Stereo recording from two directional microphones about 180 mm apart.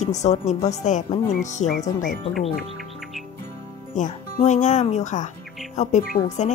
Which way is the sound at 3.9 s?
45° left (ahead or behind).